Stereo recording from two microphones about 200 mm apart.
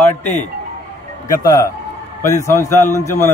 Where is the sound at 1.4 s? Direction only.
15° left (ahead or behind).